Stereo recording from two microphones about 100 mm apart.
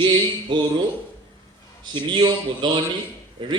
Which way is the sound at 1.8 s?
50° right (ahead or behind).